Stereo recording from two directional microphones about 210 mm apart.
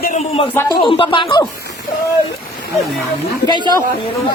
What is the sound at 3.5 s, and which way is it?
Speech, 20° left (ahead or behind).